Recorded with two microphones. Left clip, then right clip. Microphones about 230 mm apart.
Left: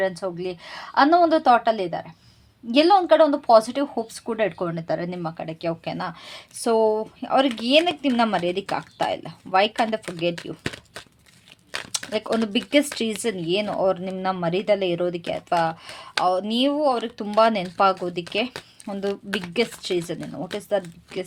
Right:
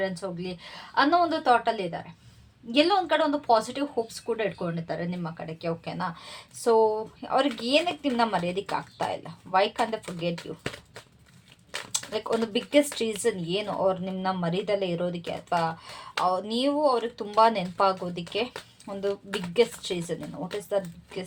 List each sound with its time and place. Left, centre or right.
0.0 s speech: left